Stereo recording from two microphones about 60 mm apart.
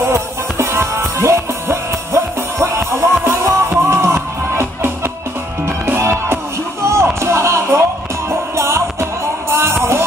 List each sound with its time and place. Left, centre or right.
0.0 s music: right